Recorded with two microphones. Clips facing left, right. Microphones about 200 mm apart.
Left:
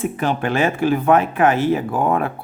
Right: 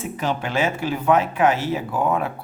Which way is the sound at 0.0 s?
55° left (ahead or behind).